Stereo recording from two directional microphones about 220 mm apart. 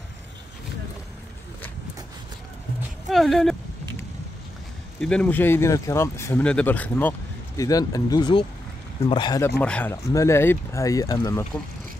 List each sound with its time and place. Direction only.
3.1 s speech: centre (ahead or behind)
5.0 s speech: 5° left (ahead or behind)
9.6 s speech: 5° left (ahead or behind)